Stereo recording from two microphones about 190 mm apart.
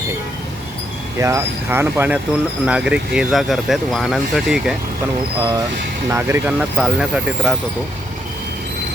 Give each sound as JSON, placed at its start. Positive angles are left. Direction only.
{"t": 1.2, "sound": "speech", "side_deg": -15}
{"t": 5.4, "sound": "speech", "side_deg": -20}